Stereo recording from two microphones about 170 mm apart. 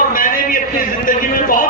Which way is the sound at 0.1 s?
55° left (ahead or behind).